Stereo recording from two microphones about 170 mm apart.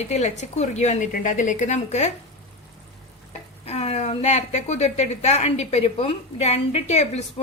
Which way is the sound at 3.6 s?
40° left (ahead or behind).